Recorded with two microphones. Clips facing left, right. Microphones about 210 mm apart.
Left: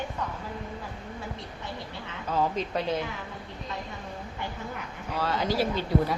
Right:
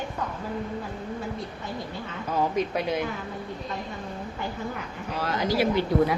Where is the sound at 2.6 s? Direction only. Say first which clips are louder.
Right 3 dB; 10° right (ahead or behind).